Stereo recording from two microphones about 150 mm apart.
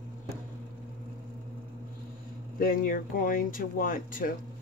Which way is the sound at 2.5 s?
70° left (ahead or behind).